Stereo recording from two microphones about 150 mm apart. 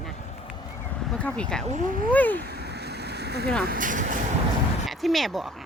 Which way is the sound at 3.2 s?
90° right.